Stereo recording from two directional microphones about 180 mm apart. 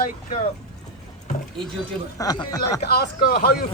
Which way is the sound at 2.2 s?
20° left (ahead or behind).